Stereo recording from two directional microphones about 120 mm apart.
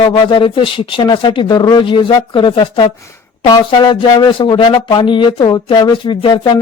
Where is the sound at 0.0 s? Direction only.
45° left (ahead or behind).